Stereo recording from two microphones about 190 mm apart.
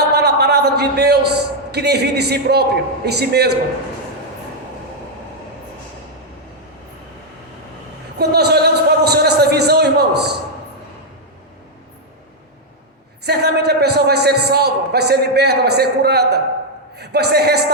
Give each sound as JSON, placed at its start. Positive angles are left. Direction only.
{"t": 0.0, "sound": "a man's voice", "side_deg": -60}
{"t": 8.2, "sound": "a sound", "side_deg": -60}
{"t": 13.2, "sound": "a man's voice", "side_deg": -60}